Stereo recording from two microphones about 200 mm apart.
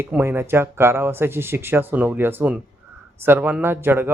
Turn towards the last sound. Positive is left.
turn(degrees=-10)  # may be behind; listen again after turning